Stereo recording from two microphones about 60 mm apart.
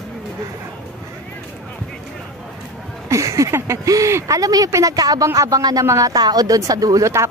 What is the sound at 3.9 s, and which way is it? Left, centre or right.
A woman's voice, right.